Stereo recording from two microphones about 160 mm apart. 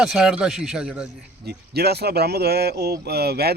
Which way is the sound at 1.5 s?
90° right.